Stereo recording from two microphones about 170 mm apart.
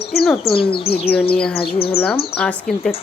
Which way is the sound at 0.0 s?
65° left (ahead or behind).